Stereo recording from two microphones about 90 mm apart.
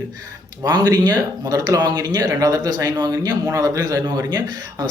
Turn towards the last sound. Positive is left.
turn(degrees=-45)  # may be behind; listen again after turning